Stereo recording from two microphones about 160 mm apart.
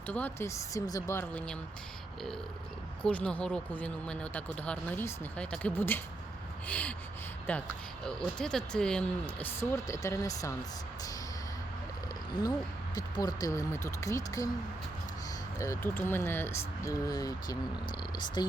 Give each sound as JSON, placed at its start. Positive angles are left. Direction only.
{"t": 0.1, "sound": "speech", "side_deg": 10}
{"t": 3.0, "sound": "speech", "side_deg": 5}
{"t": 12.4, "sound": "speech", "side_deg": 25}
{"t": 15.5, "sound": "speech", "side_deg": 20}